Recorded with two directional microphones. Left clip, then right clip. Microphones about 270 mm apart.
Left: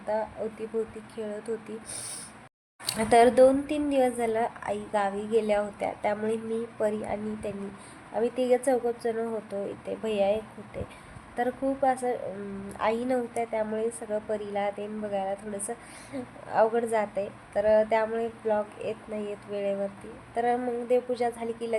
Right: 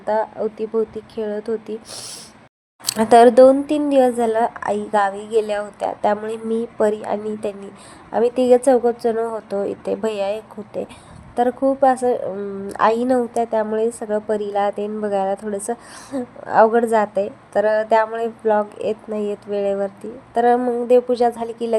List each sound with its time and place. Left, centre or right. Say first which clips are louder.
0.0 s speech: right 10 dB; right
2.8 s speech: right 9 dB; right